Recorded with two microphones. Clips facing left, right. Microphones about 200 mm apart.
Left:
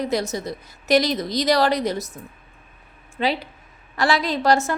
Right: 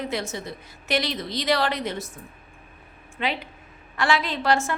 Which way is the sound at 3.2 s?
35° left (ahead or behind).